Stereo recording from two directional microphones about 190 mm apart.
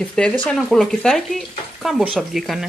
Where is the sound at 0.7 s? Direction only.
Centre (ahead or behind).